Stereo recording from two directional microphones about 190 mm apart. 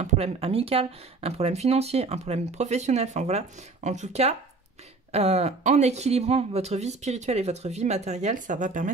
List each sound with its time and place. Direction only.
0.0 s speech: 30° right (ahead or behind)